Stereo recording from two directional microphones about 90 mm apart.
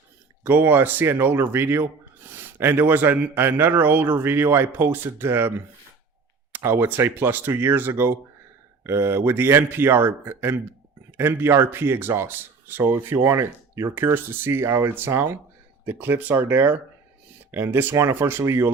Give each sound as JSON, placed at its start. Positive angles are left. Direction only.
{"t": 0.4, "sound": "speech", "side_deg": -25}